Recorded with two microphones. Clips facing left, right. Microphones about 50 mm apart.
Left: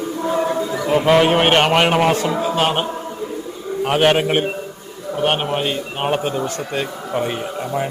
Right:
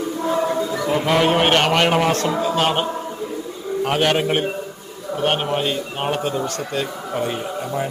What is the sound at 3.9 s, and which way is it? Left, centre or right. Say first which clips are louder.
A man's voice: left 4 dB; centre.